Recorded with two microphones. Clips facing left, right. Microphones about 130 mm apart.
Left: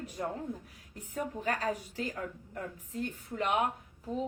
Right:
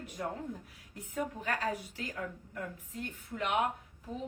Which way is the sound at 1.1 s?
40° left (ahead or behind).